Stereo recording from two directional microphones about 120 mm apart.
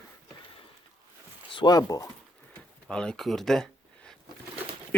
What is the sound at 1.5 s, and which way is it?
Speech, 35° left (ahead or behind).